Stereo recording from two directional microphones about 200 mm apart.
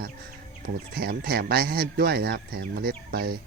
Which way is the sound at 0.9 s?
50° right (ahead or behind).